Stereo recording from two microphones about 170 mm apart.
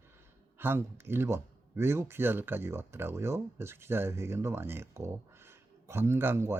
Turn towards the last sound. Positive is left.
turn(degrees=-15)  # may be behind; listen again after turning